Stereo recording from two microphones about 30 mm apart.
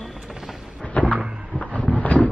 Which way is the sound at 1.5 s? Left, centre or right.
Left.